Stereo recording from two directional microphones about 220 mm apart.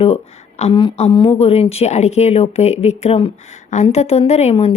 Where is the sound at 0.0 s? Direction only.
30° left (ahead or behind).